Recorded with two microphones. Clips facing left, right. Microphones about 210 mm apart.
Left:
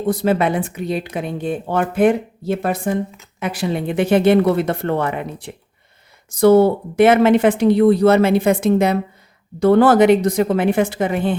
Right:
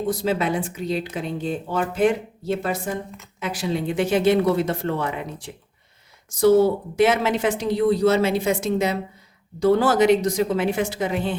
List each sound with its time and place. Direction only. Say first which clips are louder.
0.1 s speech: left 7 dB; 60° left (ahead or behind)